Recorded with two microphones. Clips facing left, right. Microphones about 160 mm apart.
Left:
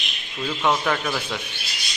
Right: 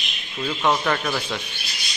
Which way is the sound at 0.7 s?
Centre (ahead or behind).